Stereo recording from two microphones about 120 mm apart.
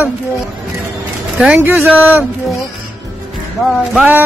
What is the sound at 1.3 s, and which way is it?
Speech, 10° right (ahead or behind).